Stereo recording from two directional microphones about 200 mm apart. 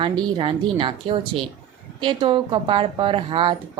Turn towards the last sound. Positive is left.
turn(degrees=-25)  # may be behind; listen again after turning